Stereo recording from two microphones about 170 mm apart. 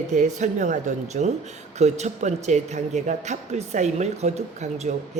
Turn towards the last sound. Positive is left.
turn(degrees=-40)  # may be behind; listen again after turning